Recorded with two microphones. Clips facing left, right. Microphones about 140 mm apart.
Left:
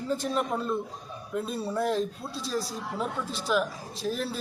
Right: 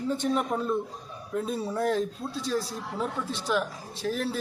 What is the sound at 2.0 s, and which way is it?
Speech, 35° left (ahead or behind).